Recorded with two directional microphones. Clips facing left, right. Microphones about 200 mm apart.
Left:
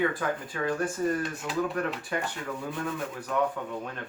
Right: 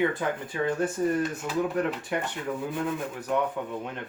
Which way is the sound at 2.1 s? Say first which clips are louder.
Right 1 dB; 20° right (ahead or behind).